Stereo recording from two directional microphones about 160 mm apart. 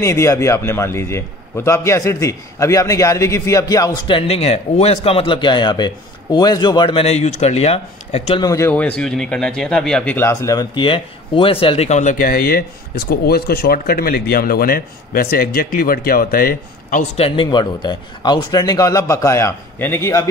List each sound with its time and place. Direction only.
0.0 s a man's voice: 15° left (ahead or behind); by 8.4 s 40° left (ahead or behind)
8.4 s speech: 20° left (ahead or behind); by 17.0 s 65° left (ahead or behind)
17.2 s a man's voice: 30° left (ahead or behind)